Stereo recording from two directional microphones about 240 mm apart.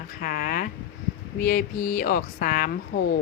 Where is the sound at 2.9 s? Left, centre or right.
Left.